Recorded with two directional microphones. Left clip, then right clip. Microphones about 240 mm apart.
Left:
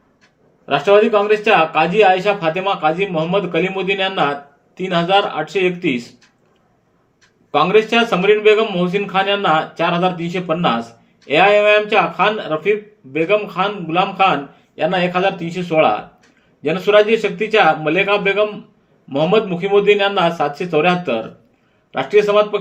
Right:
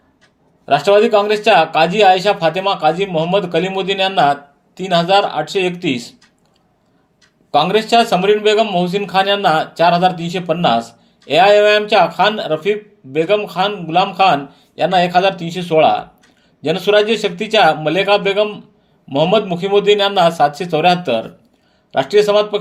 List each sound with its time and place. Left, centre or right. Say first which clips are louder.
0.6 s a man's voice: right 1 dB; right
7.5 s a man's voice: right 1 dB; right